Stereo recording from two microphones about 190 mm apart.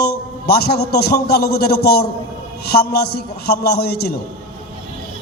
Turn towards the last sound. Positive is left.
turn(degrees=55)  # may be behind; listen again after turning